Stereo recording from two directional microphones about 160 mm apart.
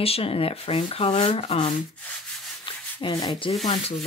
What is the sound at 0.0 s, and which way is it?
Speech, 35° left (ahead or behind).